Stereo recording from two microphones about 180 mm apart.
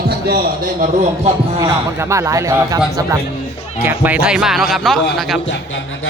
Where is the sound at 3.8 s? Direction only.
10° right (ahead or behind).